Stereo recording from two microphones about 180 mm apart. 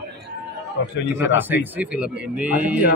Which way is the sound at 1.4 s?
10° right (ahead or behind).